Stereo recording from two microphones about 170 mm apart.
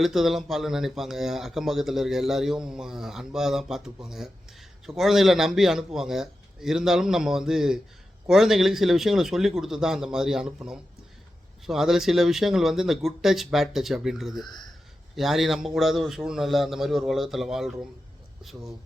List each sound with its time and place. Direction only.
0.0 s speech: centre (ahead or behind)
14.4 s speech: 25° left (ahead or behind)
15.1 s speech: centre (ahead or behind)